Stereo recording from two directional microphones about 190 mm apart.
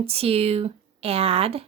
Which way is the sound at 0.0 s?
30° right (ahead or behind).